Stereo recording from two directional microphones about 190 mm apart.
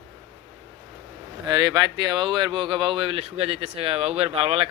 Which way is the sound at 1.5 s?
20° right (ahead or behind).